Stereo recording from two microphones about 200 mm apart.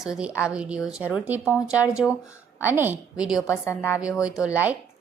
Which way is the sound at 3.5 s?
15° left (ahead or behind).